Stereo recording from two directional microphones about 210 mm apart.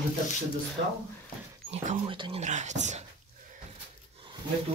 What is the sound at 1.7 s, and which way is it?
Speech, 30° right (ahead or behind).